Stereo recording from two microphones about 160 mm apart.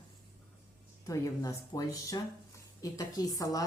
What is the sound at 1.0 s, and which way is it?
A woman's voice, 20° left (ahead or behind).